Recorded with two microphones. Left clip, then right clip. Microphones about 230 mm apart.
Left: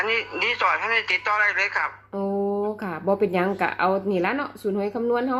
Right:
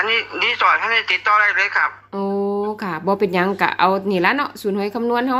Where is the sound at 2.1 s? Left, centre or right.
Centre.